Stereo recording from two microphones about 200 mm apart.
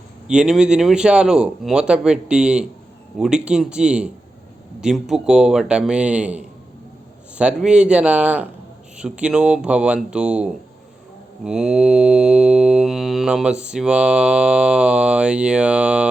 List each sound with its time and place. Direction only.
0.3 s mantra: 5° right (ahead or behind)